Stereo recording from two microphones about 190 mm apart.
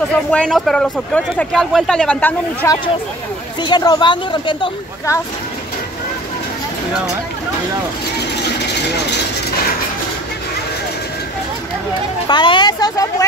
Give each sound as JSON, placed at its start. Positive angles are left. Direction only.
{"t": 0.3, "sound": "speech", "side_deg": 5}
{"t": 3.6, "sound": "speech", "side_deg": 20}
{"t": 12.3, "sound": "speech", "side_deg": 25}